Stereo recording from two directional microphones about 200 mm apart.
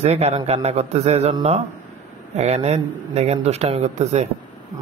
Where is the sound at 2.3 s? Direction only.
35° right (ahead or behind).